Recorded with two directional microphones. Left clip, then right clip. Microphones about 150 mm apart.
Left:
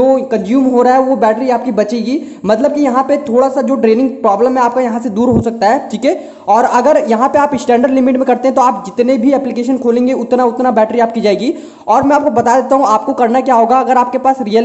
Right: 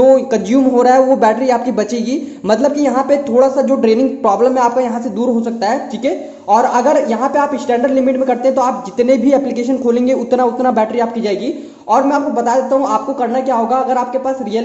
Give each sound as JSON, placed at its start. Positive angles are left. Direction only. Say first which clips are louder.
{"t": 0.0, "sound": "speech", "louder": "right 1 dB", "side_deg": 15}
{"t": 11.2, "sound": "a man's voice", "louder": "left 5 dB", "side_deg": 35}